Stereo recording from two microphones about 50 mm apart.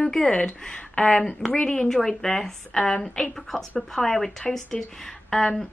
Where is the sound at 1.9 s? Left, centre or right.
Centre.